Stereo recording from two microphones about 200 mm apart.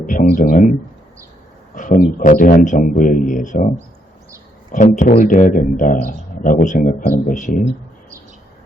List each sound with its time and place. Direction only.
0.0 s speech: 40° left (ahead or behind)
1.7 s a man's voice: 40° left (ahead or behind)
4.7 s a man's voice: 40° left (ahead or behind)